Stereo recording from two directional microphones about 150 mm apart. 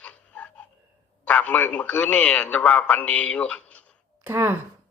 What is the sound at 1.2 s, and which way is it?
A man's voice, 10° left (ahead or behind).